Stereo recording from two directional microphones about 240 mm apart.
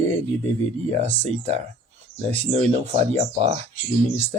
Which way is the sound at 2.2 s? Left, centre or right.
Right.